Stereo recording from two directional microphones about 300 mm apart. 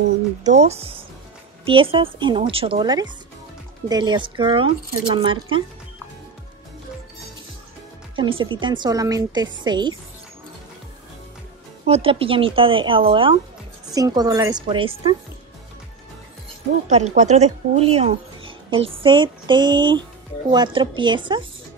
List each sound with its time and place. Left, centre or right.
0.4 s a woman's voice: right
8.4 s speech: centre
11.8 s speech: centre
16.8 s a woman's voice: right